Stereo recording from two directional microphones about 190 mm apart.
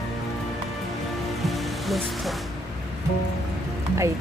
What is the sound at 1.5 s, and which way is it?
Music, centre (ahead or behind).